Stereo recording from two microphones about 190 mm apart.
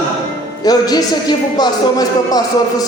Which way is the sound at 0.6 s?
20° left (ahead or behind).